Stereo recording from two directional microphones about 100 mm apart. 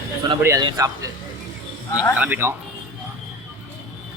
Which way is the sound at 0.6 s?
35° right (ahead or behind).